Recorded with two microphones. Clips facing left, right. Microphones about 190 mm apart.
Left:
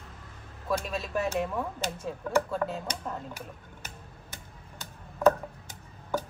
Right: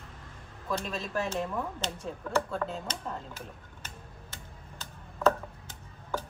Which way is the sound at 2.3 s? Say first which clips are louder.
Left 3 dB; 5° left (ahead or behind).